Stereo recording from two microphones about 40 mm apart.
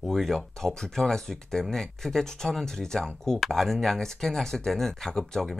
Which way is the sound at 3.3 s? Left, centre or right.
Centre.